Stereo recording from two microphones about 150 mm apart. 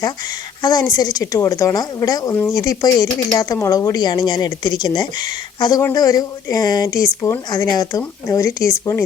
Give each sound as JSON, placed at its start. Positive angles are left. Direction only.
{"t": 0.6, "sound": "a woman's voice", "side_deg": 25}